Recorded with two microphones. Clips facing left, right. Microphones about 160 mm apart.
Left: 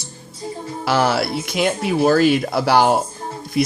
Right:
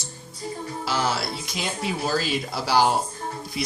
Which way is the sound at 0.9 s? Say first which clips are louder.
Left 8 dB; 65° left (ahead or behind).